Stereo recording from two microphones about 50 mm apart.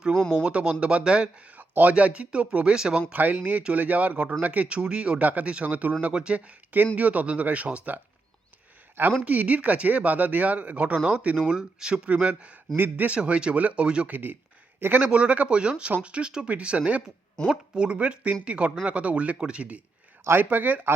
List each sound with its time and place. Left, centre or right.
0.3 s speech: right
1.5 s speech: right
2.7 s speech: centre
3.1 s speech: right
9.2 s speech: right
11.3 s speech: centre
12.7 s speech: right
13.1 s speech: right
14.1 s speech: right
15.0 s speech: right
20.2 s speech: right